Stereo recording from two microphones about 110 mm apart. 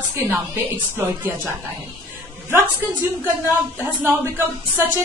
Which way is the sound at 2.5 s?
15° right (ahead or behind).